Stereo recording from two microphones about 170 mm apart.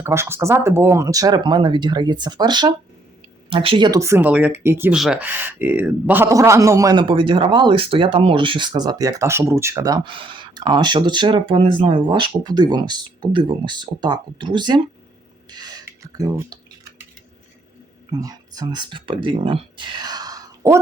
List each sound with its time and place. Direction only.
0.0 s speech: 15° right (ahead or behind)
15.4 s a sound: 25° right (ahead or behind)
18.1 s speech: 20° right (ahead or behind)